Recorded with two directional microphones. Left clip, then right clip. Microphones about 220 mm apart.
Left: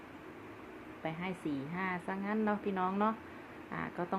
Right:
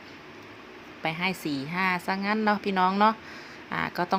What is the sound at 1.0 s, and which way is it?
Speech, 30° right (ahead or behind).